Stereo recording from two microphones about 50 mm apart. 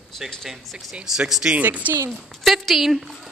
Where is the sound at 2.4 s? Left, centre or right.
Centre.